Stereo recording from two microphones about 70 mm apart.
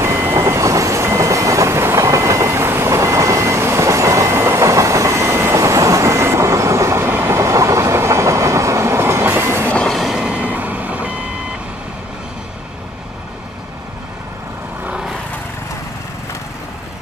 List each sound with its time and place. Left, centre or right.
0.0 s vehicle: right
7.3 s train: right
9.7 s train: centre
9.9 s train: centre
10.4 s reversing beeps: right